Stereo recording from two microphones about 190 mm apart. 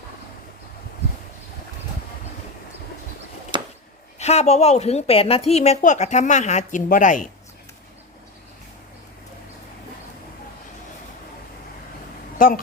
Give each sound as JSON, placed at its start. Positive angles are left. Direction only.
{"t": 3.5, "sound": "a sound", "side_deg": -25}
{"t": 4.2, "sound": "a woman's voice", "side_deg": 35}
{"t": 12.4, "sound": "speech", "side_deg": 50}